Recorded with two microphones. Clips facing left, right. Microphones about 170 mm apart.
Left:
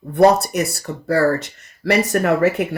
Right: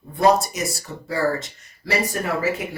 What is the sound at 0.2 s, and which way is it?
Speech, 65° left (ahead or behind).